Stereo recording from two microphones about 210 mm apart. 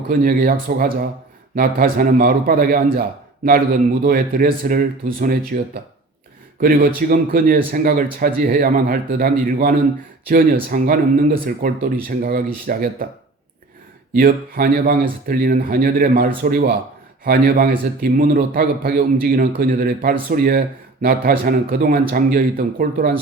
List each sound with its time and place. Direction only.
0.1 s speech: 45° right (ahead or behind)
4.0 s speech: 40° right (ahead or behind)
6.6 s speech: 45° right (ahead or behind)
14.1 s speech: 40° right (ahead or behind)